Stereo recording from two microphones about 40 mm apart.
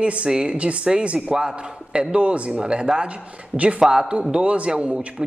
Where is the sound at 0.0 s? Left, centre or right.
Right.